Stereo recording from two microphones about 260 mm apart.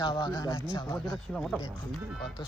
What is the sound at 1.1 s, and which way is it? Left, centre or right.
Speech, centre.